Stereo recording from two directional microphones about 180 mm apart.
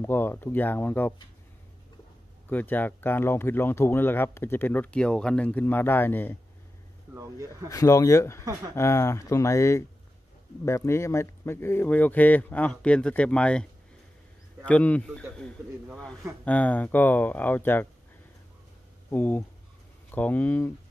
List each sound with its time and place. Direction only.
0.0 s speech: 10° left (ahead or behind)
2.5 s speech: 10° left (ahead or behind)
7.2 s speech: 15° right (ahead or behind)
7.7 s speech: 20° left (ahead or behind)
16.4 s speech: 10° left (ahead or behind)
19.0 s speech: 10° left (ahead or behind)